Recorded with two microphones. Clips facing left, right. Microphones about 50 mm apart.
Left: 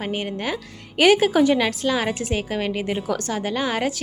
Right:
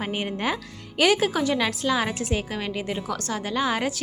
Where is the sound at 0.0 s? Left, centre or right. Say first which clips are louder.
Left 1 dB; centre.